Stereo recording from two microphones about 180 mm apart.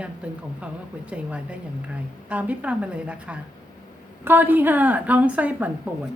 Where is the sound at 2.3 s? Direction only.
10° right (ahead or behind).